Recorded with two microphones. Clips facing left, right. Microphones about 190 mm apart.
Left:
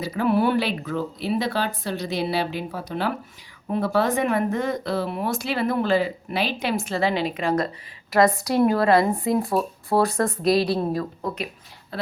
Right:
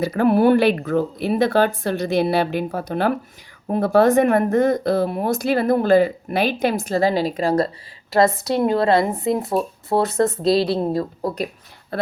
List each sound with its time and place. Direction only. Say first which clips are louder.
0.0 s speech: right 5 dB; 50° right (ahead or behind); by 11.3 s 30° right (ahead or behind)